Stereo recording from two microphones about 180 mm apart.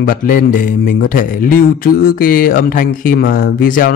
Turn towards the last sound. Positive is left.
turn(degrees=50)  # may be behind; listen again after turning